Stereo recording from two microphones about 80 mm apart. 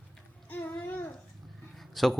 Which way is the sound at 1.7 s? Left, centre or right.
Centre.